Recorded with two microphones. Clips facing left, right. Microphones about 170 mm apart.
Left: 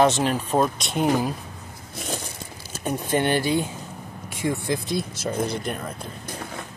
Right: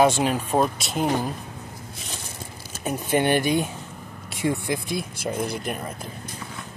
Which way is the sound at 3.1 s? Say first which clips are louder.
Right 1 dB; 15° right (ahead or behind).